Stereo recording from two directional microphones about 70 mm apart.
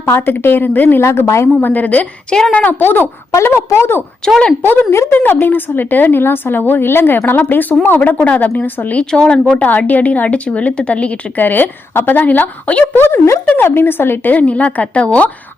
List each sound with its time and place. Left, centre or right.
0.0 s a woman's voice: left
1.0 s a woman's voice: left
1.6 s a woman's voice: left
3.3 s a woman's voice: left
4.2 s speech: centre
4.6 s a woman's voice: left
4.9 s a woman's voice: left
9.0 s speech: centre
9.5 s a woman's voice: left
14.3 s a woman's voice: left